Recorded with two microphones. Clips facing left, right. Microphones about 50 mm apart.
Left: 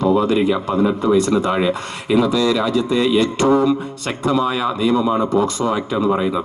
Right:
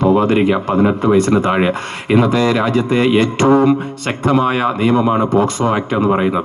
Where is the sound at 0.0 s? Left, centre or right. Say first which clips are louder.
Right 3 dB; right.